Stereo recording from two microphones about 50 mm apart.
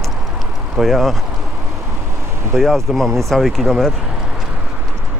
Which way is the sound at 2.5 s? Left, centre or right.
Centre.